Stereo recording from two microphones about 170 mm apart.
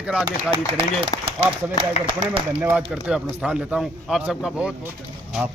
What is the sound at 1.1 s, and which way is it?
Speech, 30° left (ahead or behind).